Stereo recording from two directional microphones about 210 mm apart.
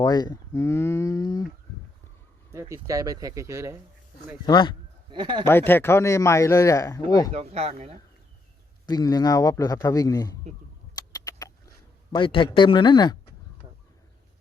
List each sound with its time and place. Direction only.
0.0 s speech: 20° left (ahead or behind)
2.5 s speech: 15° right (ahead or behind)
4.4 s speech: 20° left (ahead or behind)
5.1 s speech: 25° right (ahead or behind)
5.5 s speech: 10° left (ahead or behind)
7.3 s speech: 30° right (ahead or behind)
8.9 s speech: 20° left (ahead or behind)
10.9 s rodents: 15° left (ahead or behind)
12.1 s speech: 25° left (ahead or behind)